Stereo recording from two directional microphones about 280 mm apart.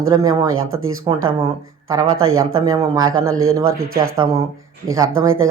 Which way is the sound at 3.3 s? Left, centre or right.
Right.